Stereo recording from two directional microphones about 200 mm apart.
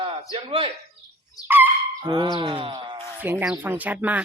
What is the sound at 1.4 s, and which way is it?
Speech, 10° right (ahead or behind).